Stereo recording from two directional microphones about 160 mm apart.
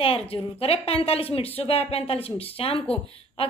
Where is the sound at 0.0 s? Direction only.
35° left (ahead or behind).